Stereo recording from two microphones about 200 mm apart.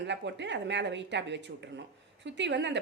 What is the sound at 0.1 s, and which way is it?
A woman's voice, 60° right (ahead or behind).